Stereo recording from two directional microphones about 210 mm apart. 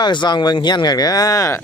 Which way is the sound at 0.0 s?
20° left (ahead or behind).